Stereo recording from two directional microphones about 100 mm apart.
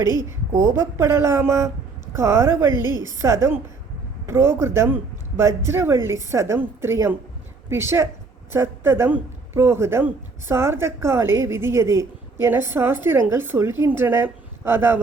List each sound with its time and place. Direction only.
0.0 s a woman's voice: 40° left (ahead or behind)
0.3 s a woman's voice: 25° right (ahead or behind)